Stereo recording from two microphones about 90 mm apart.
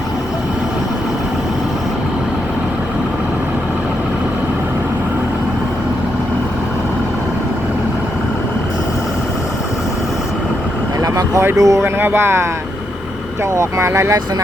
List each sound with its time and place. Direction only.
11.0 s vehicle: 40° right (ahead or behind)
11.5 s speech: 40° right (ahead or behind)
11.8 s speech: 25° right (ahead or behind)
13.5 s speech: 30° right (ahead or behind)